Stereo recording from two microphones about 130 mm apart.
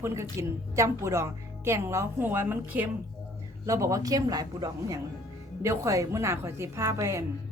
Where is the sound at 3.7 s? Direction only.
25° right (ahead or behind).